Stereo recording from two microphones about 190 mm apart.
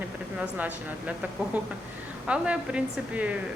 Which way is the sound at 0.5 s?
10° right (ahead or behind).